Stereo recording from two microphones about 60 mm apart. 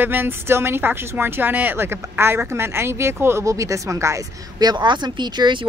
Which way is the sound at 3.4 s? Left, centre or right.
Right.